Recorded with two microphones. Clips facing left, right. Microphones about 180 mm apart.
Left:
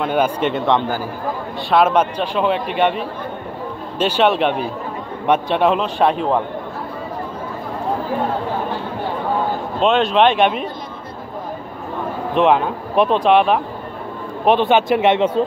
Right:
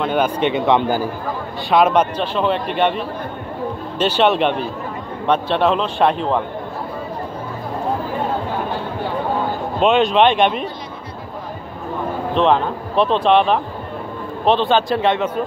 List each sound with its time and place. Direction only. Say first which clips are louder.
0.0 s speech: even; 5° left (ahead or behind); by 1.0 s 15° right (ahead or behind)
1.7 s a man's voice: even; 5° left (ahead or behind)
9.8 s speech: right 1 dB; centre (ahead or behind)
12.4 s a man's voice: left 1 dB; 10° left (ahead or behind); by 15.4 s 25° left (ahead or behind)